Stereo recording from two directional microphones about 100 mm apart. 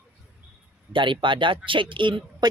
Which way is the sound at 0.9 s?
55° right (ahead or behind).